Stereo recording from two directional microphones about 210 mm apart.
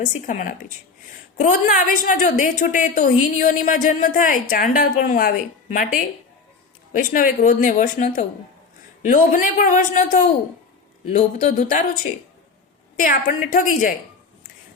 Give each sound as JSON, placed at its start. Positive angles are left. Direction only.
{"t": 0.0, "sound": "a woman's voice", "side_deg": 40}